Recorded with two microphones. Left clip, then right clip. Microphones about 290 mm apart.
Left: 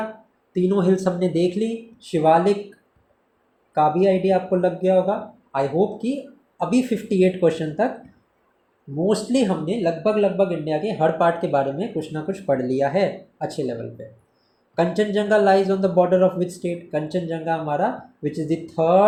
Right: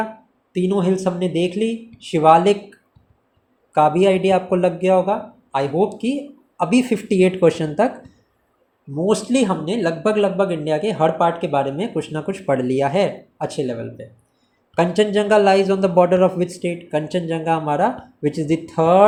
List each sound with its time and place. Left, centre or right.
0.5 s speech: centre
3.7 s speech: right
9.0 s speech: centre
14.8 s speech: centre